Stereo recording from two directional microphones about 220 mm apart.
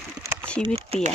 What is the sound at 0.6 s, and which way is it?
Speech, 25° right (ahead or behind).